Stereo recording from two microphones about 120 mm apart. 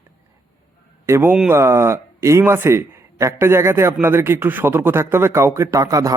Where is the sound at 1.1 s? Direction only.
20° right (ahead or behind).